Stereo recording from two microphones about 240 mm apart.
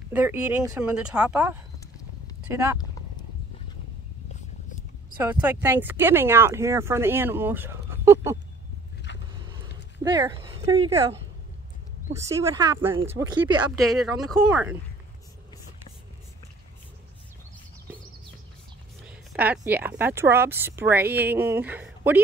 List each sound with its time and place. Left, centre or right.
0.1 s speech: centre
5.2 s speech: centre
9.1 s vehicle: left
9.5 s a sound: centre
12.1 s speech: centre
13.7 s speech: centre
19.0 s speech: centre